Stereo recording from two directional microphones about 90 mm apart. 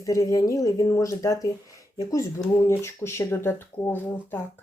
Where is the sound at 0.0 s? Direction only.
40° left (ahead or behind).